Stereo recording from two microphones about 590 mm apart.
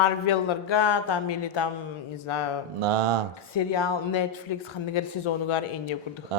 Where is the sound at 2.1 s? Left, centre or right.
Left.